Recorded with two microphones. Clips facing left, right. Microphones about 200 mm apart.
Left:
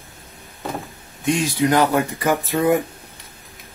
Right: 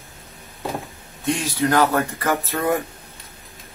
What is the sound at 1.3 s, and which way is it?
Speech, 15° left (ahead or behind).